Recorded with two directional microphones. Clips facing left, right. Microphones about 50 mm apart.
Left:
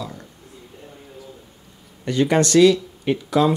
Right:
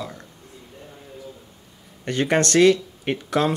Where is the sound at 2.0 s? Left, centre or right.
Right.